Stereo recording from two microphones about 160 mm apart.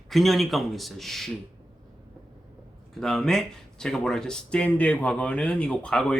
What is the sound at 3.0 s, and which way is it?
Speech, 5° left (ahead or behind).